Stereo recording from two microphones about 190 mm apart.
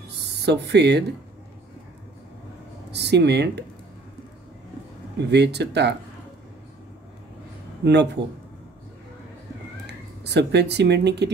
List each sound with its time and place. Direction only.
0.4 s speech: 65° right (ahead or behind)
2.9 s speech: 60° right (ahead or behind)
5.3 s speech: 65° right (ahead or behind)
7.8 s speech: 65° right (ahead or behind)
9.8 s speech: 60° right (ahead or behind)